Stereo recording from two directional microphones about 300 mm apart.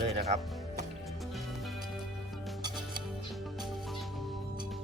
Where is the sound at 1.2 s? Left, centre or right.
Centre.